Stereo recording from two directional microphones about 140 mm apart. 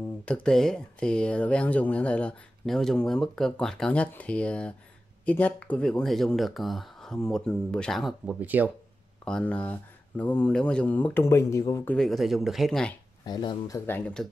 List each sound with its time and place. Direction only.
0.2 s speech: 5° left (ahead or behind)
8.4 s speech: 10° right (ahead or behind)
9.2 s speech: 10° left (ahead or behind)
11.9 s speech: centre (ahead or behind)
13.2 s speech: 30° left (ahead or behind)
13.7 s speech: 15° left (ahead or behind)